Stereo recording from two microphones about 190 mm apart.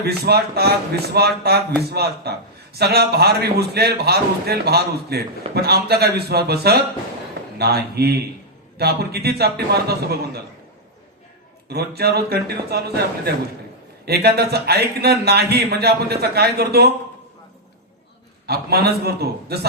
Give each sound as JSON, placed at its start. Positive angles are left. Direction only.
{"t": 0.0, "sound": "a man's voice", "side_deg": -55}
{"t": 11.7, "sound": "a man's voice", "side_deg": -55}
{"t": 18.4, "sound": "a man's voice", "side_deg": -55}